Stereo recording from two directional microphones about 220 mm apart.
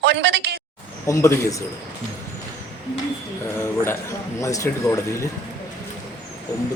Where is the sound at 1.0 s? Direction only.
15° left (ahead or behind).